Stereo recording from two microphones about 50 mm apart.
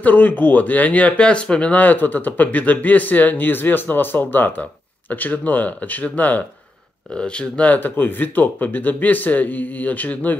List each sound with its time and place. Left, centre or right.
0.0 s speech: left
7.2 s speech: centre
7.7 s speech: left